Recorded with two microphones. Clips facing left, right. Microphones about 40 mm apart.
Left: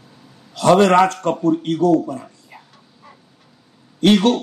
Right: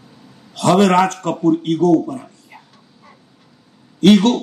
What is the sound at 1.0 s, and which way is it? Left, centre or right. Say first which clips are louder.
Speech: right 1 dB; right.